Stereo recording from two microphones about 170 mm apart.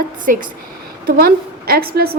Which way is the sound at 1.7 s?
60° right (ahead or behind).